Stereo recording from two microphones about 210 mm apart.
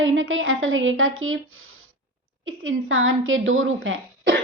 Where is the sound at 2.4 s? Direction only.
75° right (ahead or behind).